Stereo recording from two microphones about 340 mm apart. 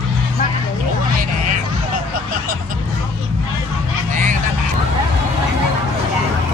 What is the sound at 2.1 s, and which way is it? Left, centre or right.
Vehicle, right.